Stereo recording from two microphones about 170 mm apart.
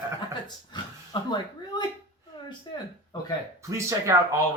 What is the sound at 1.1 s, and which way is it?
Speech, 30° left (ahead or behind).